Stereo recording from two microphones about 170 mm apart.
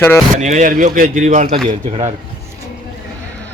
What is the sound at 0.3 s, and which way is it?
Speech, 45° right (ahead or behind).